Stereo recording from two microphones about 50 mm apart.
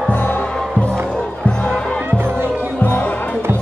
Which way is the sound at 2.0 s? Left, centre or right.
Right.